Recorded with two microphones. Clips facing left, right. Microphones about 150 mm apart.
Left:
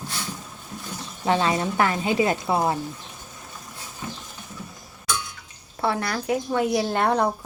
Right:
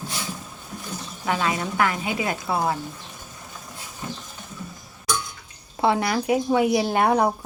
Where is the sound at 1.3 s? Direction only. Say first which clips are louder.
Left 3 dB; 30° left (ahead or behind).